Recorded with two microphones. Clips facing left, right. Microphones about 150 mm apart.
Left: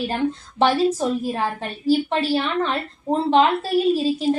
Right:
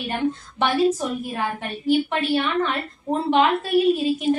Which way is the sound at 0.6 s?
35° left (ahead or behind).